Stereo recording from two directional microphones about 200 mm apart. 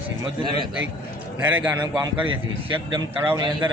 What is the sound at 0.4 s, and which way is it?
Speech, 25° right (ahead or behind).